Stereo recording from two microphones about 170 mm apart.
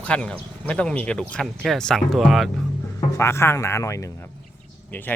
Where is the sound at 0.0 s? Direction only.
5° left (ahead or behind).